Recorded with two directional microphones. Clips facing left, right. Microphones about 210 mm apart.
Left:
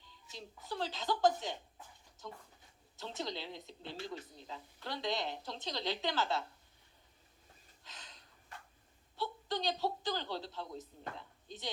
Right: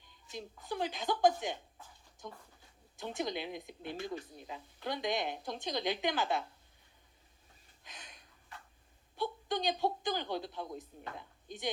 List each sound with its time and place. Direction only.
0.3 s speech: 15° right (ahead or behind)
3.0 s speech: 15° right (ahead or behind)
7.9 s a sound: 15° right (ahead or behind)
9.1 s speech: 15° right (ahead or behind)